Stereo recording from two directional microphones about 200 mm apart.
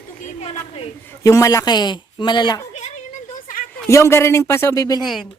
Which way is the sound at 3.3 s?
40° left (ahead or behind).